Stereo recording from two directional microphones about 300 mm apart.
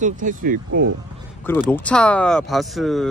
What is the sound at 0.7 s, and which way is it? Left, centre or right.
Speech, right.